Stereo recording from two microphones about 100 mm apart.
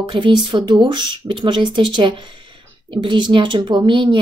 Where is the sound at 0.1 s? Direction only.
50° right (ahead or behind).